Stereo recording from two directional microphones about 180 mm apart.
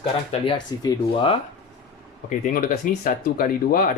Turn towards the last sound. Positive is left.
turn(degrees=55)  # may be behind; listen again after turning